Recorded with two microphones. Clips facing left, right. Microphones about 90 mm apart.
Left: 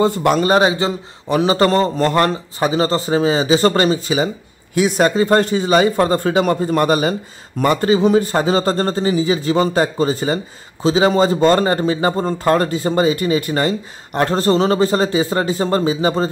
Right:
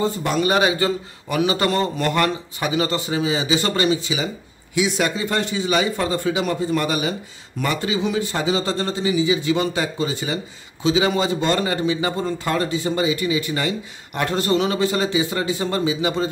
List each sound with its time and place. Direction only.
0.0 s a man's voice: 65° left (ahead or behind)
0.4 s a man's voice: 35° left (ahead or behind)